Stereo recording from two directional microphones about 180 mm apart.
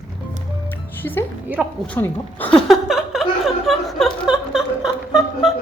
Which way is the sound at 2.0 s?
10° left (ahead or behind).